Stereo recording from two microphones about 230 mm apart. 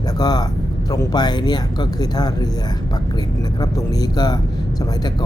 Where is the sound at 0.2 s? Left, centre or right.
Centre.